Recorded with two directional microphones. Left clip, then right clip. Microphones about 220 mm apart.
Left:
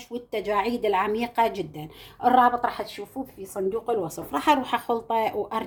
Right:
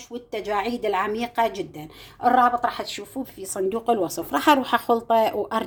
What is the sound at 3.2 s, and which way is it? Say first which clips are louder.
Speech: right 2 dB; 35° right (ahead or behind).